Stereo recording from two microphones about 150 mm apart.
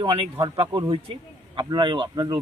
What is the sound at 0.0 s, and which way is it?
Speech, 35° right (ahead or behind).